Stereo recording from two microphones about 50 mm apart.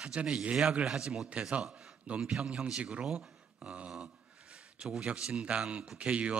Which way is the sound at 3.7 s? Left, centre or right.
Right.